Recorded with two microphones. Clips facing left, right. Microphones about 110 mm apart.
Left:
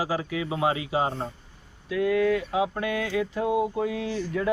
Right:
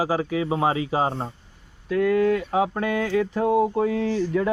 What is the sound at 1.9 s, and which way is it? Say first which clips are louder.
Speech: right 3 dB; 45° right (ahead or behind).